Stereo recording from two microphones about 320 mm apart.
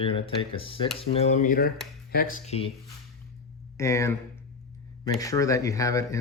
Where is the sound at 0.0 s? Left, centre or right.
Centre.